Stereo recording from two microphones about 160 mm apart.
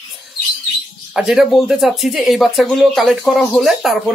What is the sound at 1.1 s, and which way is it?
Speech, 5° right (ahead or behind).